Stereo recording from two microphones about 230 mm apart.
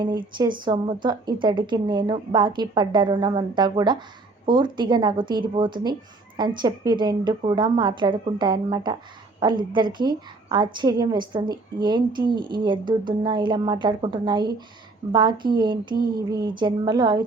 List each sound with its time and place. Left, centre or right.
0.0 s speech: centre